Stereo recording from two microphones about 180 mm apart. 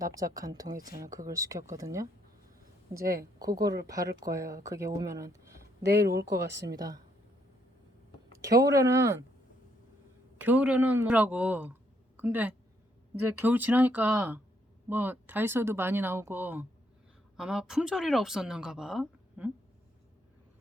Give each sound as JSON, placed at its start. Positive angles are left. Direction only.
{"t": 0.0, "sound": "speech", "side_deg": -20}
{"t": 0.7, "sound": "speech", "side_deg": -50}
{"t": 1.0, "sound": "speech", "side_deg": -20}
{"t": 3.0, "sound": "speech", "side_deg": -55}
{"t": 3.8, "sound": "speech", "side_deg": -20}
{"t": 5.8, "sound": "speech", "side_deg": -65}
{"t": 6.7, "sound": "speech", "side_deg": -20}
{"t": 8.4, "sound": "speech", "side_deg": -20}
{"t": 10.3, "sound": "speech", "side_deg": -10}